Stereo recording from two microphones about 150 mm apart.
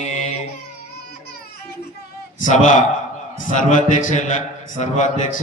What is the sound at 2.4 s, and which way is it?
A man's voice, 60° left (ahead or behind).